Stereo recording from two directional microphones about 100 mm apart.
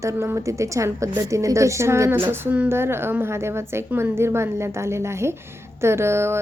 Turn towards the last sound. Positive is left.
turn(degrees=-25)  # may be behind; listen again after turning